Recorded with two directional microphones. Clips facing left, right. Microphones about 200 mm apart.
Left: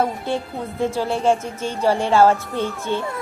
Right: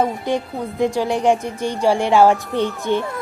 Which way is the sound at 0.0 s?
15° right (ahead or behind).